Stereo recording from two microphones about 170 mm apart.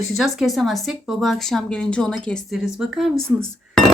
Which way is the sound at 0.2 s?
Centre (ahead or behind).